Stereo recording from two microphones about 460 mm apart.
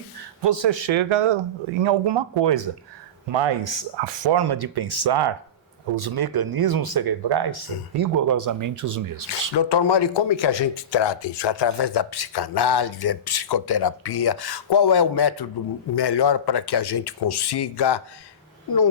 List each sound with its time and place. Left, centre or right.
0.4 s speech: right
1.8 s speech: right
7.9 s speech: right
9.6 s speech: left